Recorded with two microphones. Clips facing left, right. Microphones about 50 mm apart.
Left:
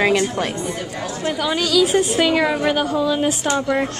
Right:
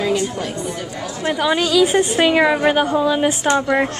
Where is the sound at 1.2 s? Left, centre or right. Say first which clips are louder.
Right 4 dB; right.